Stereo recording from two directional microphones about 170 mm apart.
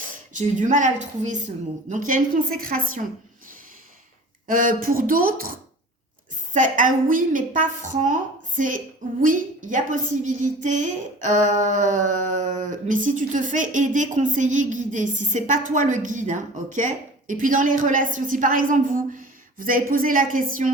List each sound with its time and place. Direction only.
0.3 s a woman's voice: 45° right (ahead or behind)
4.4 s a woman's voice: 55° right (ahead or behind)